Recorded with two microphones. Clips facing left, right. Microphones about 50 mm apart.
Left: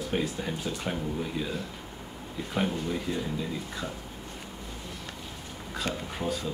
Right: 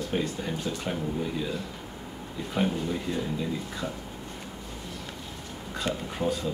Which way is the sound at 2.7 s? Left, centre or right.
Centre.